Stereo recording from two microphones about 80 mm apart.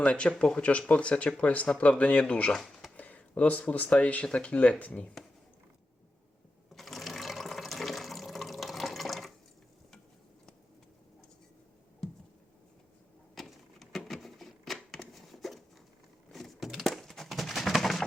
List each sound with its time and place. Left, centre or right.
0.0 s speech: centre
6.7 s water: centre
13.3 s a sound: centre